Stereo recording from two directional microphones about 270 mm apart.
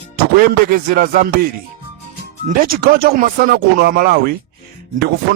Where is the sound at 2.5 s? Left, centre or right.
Right.